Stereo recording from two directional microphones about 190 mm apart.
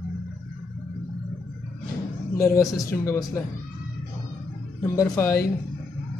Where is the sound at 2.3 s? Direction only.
15° left (ahead or behind).